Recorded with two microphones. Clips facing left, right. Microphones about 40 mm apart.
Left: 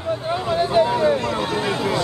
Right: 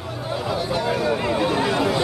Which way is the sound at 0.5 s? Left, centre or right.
Left.